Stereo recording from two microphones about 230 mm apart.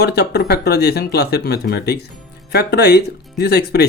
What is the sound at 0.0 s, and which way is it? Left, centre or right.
Speech, left.